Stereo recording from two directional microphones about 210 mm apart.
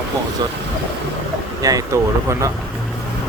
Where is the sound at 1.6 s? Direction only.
15° right (ahead or behind).